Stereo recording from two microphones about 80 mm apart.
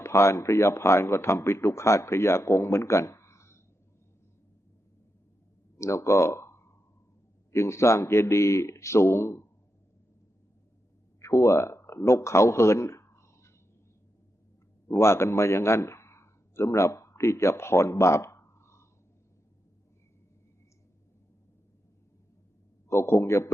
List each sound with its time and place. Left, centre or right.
0.0 s speech: left
5.7 s a sound: left
7.5 s speech: left
11.2 s speech: left
14.8 s a man's voice: left
22.9 s speech: left